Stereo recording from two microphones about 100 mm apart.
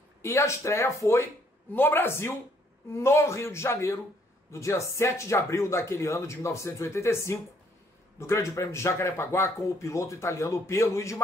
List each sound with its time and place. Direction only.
0.2 s speech: 30° left (ahead or behind)